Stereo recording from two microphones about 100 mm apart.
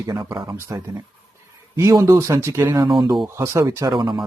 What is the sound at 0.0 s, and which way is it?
Speech, 40° right (ahead or behind).